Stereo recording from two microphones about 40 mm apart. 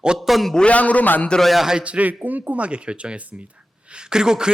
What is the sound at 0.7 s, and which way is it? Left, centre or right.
Speech, left.